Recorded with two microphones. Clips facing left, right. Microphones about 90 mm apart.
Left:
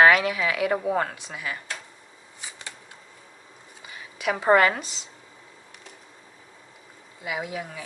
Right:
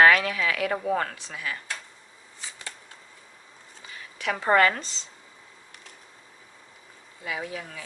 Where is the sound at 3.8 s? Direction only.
15° left (ahead or behind).